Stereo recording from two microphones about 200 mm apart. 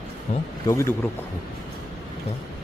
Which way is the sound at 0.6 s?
15° left (ahead or behind).